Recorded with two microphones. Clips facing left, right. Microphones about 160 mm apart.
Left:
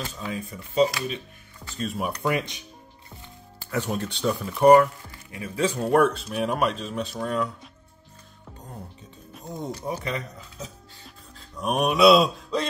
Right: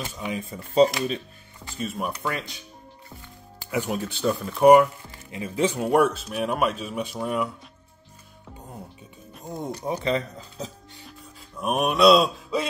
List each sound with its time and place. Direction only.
0.0 s speech: 20° right (ahead or behind); by 1.2 s 35° right (ahead or behind)
1.8 s speech: centre (ahead or behind)
2.2 s speech: 20° left (ahead or behind)
3.7 s speech: 10° right (ahead or behind)
5.3 s speech: 20° right (ahead or behind)
9.8 s speech: 30° right (ahead or behind)
11.1 s music: 5° right (ahead or behind)